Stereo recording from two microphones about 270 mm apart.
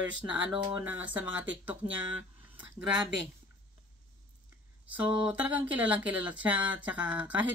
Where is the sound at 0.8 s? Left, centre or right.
Centre.